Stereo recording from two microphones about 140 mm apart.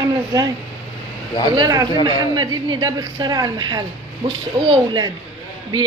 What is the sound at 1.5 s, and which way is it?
A woman's voice, 25° right (ahead or behind).